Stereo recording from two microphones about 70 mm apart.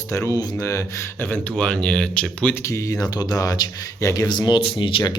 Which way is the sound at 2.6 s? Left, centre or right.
Left.